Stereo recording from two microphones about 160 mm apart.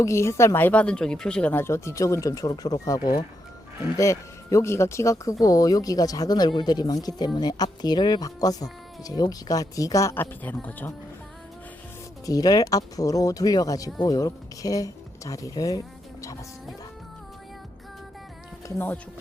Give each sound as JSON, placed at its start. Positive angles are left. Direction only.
{"t": 0.0, "sound": "speech", "side_deg": 15}
{"t": 12.2, "sound": "speech", "side_deg": 20}